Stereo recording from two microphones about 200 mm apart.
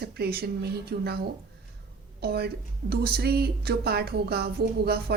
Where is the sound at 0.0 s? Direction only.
55° right (ahead or behind).